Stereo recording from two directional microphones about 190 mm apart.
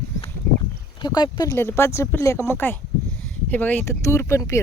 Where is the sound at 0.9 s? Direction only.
25° left (ahead or behind).